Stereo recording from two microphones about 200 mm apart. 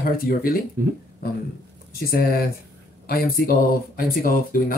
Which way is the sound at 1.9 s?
50° left (ahead or behind).